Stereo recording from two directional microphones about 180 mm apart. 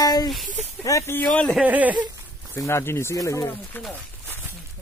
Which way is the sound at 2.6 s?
15° left (ahead or behind).